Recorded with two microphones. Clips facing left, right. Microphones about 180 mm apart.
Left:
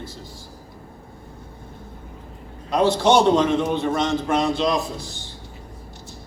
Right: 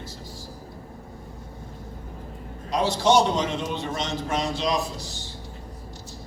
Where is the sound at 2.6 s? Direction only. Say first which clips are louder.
Left 4 dB; 60° left (ahead or behind).